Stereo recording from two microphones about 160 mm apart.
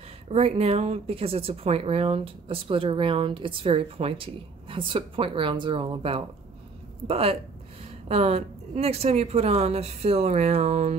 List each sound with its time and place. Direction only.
0.3 s speech: 40° right (ahead or behind)